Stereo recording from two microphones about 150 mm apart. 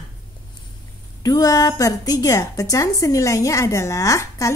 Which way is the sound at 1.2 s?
25° left (ahead or behind).